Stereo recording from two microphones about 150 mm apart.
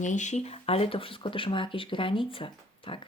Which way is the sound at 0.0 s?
55° left (ahead or behind).